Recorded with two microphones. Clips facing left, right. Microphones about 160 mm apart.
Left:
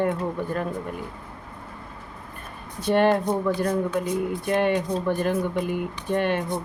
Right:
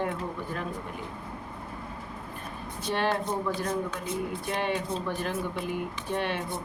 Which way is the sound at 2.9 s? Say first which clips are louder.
Left 9 dB; 55° left (ahead or behind).